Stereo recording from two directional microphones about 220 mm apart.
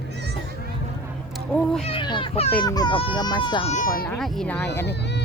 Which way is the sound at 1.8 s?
20° left (ahead or behind).